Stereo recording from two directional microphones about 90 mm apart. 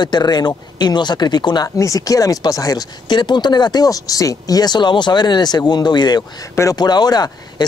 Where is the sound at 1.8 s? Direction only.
40° left (ahead or behind).